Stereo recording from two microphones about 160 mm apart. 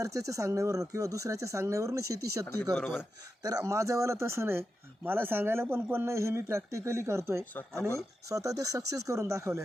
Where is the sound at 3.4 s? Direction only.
20° right (ahead or behind).